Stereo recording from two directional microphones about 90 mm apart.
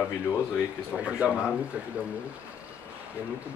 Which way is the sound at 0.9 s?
10° right (ahead or behind).